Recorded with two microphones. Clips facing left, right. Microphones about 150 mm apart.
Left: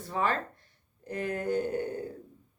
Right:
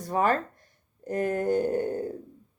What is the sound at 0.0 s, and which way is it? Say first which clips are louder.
Speech: right 5 dB; 45° right (ahead or behind).